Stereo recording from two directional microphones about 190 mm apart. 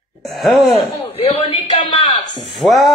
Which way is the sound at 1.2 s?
25° left (ahead or behind).